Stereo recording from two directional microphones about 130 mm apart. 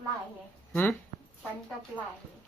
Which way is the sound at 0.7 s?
15° left (ahead or behind).